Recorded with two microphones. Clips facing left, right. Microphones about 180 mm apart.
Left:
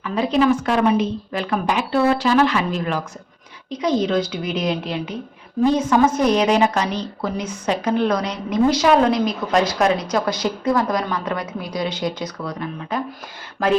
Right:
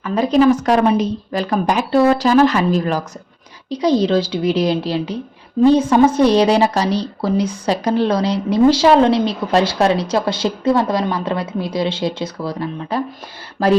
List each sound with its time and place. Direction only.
0.0 s a woman's voice: 40° right (ahead or behind)